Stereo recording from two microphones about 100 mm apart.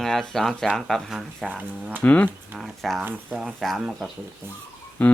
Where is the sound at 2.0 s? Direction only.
15° left (ahead or behind).